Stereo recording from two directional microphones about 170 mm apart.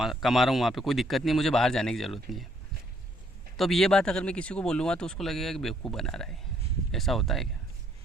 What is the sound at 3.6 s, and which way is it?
Speech, centre (ahead or behind).